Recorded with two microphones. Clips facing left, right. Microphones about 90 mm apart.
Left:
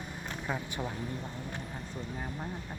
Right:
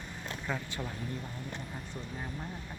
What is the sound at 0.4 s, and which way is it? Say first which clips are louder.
Speech: left 2 dB; 15° left (ahead or behind).